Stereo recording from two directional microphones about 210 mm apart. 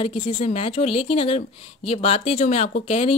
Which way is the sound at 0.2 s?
35° left (ahead or behind).